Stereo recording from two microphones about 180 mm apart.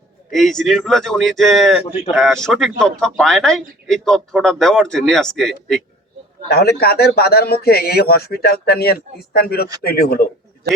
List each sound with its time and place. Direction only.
0.3 s a man's voice: centre (ahead or behind)
6.5 s a man's voice: 60° left (ahead or behind)